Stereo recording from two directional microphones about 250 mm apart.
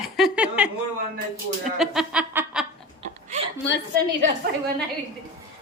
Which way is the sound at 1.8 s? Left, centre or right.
Centre.